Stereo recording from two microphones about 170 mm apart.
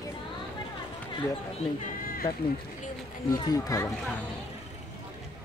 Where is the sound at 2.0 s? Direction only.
60° left (ahead or behind).